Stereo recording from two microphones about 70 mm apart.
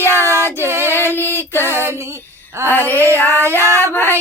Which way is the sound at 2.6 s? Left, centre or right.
Left.